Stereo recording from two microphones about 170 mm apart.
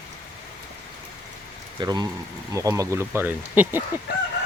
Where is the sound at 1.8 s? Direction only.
25° right (ahead or behind).